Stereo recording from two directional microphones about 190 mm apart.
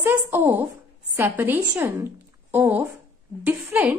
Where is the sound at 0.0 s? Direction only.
10° right (ahead or behind).